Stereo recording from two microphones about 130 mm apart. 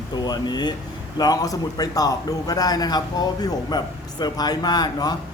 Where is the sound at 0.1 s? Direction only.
35° left (ahead or behind).